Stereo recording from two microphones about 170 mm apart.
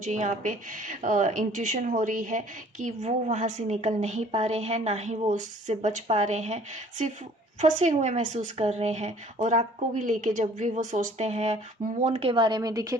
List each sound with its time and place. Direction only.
0.0 s a woman's voice: 45° right (ahead or behind)
7.6 s a woman's voice: 45° right (ahead or behind); by 13.0 s 20° right (ahead or behind)